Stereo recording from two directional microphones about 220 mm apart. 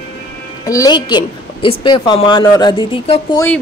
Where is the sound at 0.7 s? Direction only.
15° left (ahead or behind).